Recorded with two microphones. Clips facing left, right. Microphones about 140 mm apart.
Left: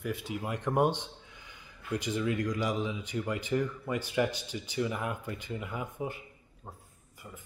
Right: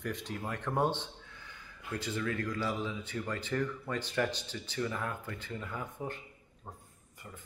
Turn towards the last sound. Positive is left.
turn(degrees=10)  # may be behind; listen again after turning